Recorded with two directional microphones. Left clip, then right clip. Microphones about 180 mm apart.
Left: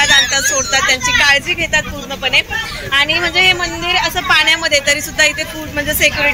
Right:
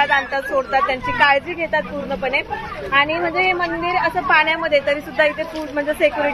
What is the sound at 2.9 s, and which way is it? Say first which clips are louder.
A woman's voice: left 4 dB; 30° left (ahead or behind).